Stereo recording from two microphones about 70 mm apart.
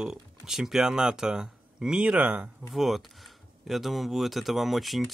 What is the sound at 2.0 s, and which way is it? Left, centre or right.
Speech, centre.